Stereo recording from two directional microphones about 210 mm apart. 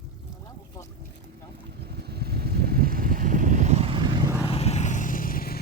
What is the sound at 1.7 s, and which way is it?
Vehicle, 50° right (ahead or behind).